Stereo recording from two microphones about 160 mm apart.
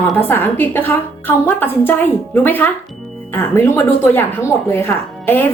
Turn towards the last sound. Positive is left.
turn(degrees=15)  # may be behind; listen again after turning